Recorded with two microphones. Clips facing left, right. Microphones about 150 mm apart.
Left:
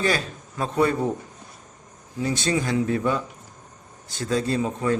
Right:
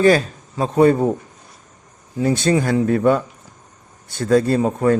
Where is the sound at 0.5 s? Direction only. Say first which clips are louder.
Right 8 dB; 35° right (ahead or behind).